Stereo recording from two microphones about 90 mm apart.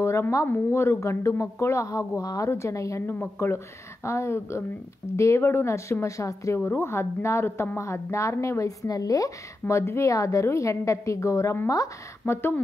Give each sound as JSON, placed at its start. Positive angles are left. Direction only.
{"t": 0.0, "sound": "a woman's voice", "side_deg": 30}
{"t": 3.1, "sound": "a woman's voice", "side_deg": 25}